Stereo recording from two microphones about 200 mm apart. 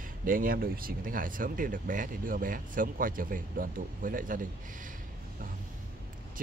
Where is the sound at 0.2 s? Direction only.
45° right (ahead or behind).